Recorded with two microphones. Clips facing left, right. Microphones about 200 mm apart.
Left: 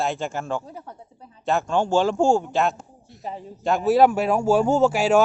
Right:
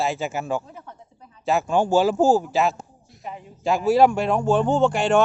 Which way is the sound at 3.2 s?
35° left (ahead or behind).